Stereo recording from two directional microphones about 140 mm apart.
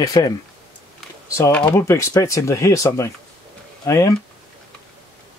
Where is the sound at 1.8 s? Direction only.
20° left (ahead or behind).